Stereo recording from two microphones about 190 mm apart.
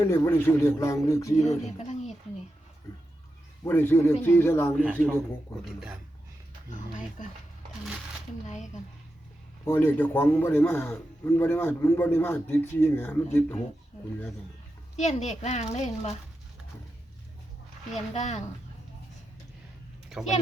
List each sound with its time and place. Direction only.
0.0 s a man's voice: 15° left (ahead or behind)
3.6 s a man's voice: 10° left (ahead or behind)
8.4 s a sound: 40° left (ahead or behind)
9.6 s a man's voice: 10° left (ahead or behind)
14.9 s a woman's voice: 35° left (ahead or behind)
17.9 s a woman's voice: 35° left (ahead or behind)
20.1 s a sound: centre (ahead or behind)